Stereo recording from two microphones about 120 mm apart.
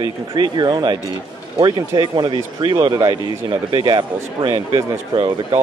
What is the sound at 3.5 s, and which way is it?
Speech, 45° right (ahead or behind).